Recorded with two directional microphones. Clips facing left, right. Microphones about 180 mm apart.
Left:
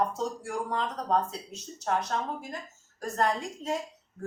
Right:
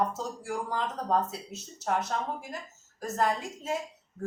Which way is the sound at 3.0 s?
Centre (ahead or behind).